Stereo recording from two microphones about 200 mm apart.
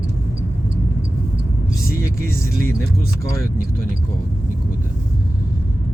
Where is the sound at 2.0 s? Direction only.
15° left (ahead or behind).